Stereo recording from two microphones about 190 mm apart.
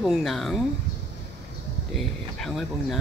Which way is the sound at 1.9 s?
Centre (ahead or behind).